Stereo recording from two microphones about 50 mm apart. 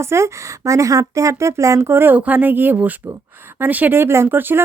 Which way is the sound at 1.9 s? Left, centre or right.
Right.